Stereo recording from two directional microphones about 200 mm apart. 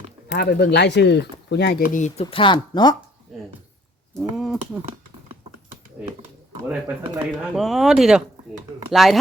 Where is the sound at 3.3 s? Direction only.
Centre (ahead or behind).